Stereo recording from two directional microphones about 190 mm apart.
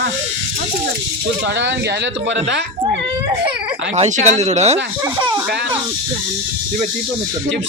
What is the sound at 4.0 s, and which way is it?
Speech, 40° right (ahead or behind).